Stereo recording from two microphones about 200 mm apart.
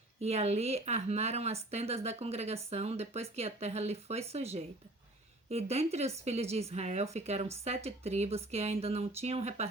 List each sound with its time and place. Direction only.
0.2 s a woman's voice: 30° right (ahead or behind)